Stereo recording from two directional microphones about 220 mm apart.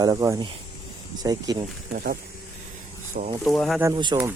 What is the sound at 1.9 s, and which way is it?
Speech, 40° right (ahead or behind).